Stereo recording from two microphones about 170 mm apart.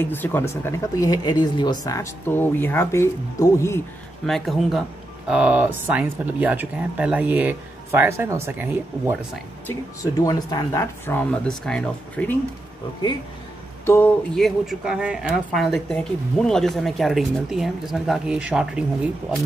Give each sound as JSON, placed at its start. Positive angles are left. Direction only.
{"t": 0.0, "sound": "speech", "side_deg": 10}
{"t": 4.3, "sound": "speech", "side_deg": 0}
{"t": 9.7, "sound": "speech", "side_deg": 20}
{"t": 13.8, "sound": "speech", "side_deg": 15}
{"t": 14.3, "sound": "speech", "side_deg": 0}